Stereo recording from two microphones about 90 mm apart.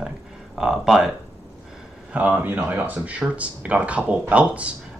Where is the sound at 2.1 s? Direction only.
15° right (ahead or behind).